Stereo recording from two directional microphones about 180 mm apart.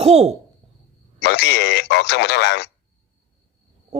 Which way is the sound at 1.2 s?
65° left (ahead or behind).